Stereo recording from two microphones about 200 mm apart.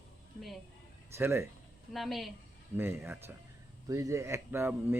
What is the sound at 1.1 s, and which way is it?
Speech, 15° right (ahead or behind).